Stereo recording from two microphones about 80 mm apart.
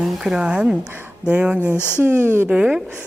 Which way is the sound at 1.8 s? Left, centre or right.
Left.